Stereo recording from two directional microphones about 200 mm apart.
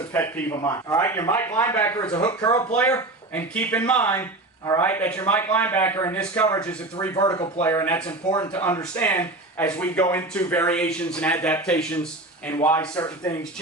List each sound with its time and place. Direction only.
0.1 s a man's voice: 15° left (ahead or behind)
2.0 s speech: 25° left (ahead or behind)
2.7 s a man's voice: 10° left (ahead or behind)
7.0 s a man's voice: 15° left (ahead or behind)
8.0 s speech: 20° left (ahead or behind)
8.5 s a man's voice: 10° left (ahead or behind)